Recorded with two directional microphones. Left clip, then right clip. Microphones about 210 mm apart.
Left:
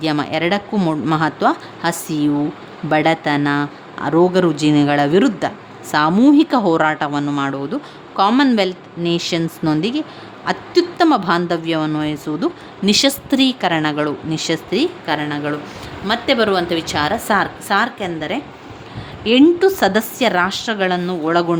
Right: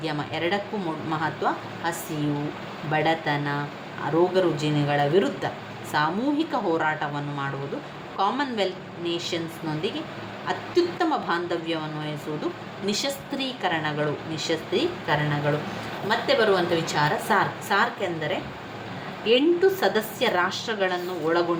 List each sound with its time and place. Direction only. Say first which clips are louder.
0.0 s a woman's voice: left 9 dB; 55° left (ahead or behind)